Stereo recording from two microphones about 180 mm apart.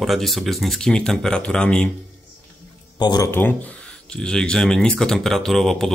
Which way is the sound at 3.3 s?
10° left (ahead or behind).